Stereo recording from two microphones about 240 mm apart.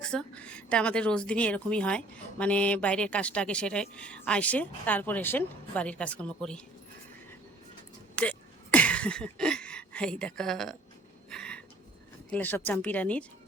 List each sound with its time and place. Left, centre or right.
0.0 s speech: centre
8.1 s a sound: centre
12.3 s speech: centre